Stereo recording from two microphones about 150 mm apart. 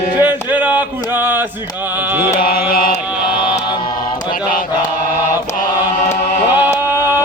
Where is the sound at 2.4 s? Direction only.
80° left.